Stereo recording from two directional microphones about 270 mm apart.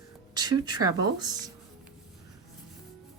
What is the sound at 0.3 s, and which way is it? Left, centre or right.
Speech, centre.